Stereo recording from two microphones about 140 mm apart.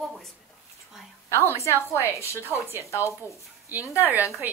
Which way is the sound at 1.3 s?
20° left (ahead or behind).